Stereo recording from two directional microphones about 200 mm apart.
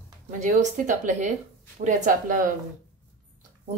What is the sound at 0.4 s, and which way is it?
Speech, 40° right (ahead or behind).